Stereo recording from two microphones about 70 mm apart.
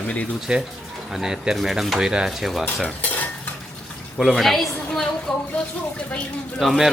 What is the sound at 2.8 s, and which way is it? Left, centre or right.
Cutlery, left.